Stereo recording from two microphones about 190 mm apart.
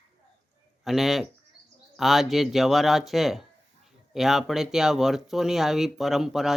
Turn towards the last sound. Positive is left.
turn(degrees=0)  # may be behind; listen again after turning